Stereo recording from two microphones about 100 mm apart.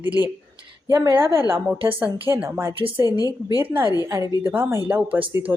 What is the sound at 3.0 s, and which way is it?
Speech, 40° left (ahead or behind).